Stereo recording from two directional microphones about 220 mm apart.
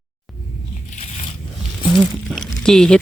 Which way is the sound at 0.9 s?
30° left (ahead or behind).